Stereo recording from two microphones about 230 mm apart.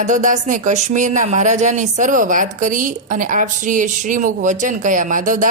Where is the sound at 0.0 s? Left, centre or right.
Right.